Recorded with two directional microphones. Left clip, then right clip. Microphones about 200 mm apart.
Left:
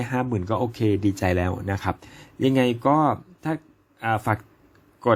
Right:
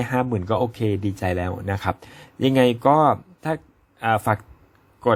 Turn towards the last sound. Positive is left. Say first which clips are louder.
# right 3 dB
turn(degrees=-15)  # may be behind; listen again after turning